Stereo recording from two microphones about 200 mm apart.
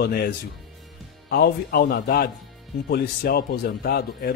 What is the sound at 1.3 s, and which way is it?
Speech, 50° left (ahead or behind).